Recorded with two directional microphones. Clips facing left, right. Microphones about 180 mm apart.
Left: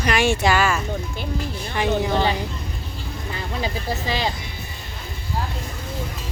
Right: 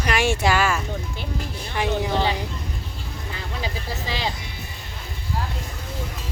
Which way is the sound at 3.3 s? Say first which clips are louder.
Left 4 dB; 55° left (ahead or behind).